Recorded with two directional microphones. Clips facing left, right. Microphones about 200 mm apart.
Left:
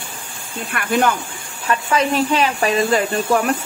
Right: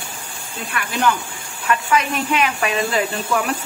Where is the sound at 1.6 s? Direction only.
30° left (ahead or behind).